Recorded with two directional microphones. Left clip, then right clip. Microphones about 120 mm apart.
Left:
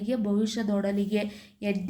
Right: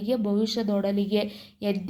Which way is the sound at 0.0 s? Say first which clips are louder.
Right 3 dB; 20° right (ahead or behind).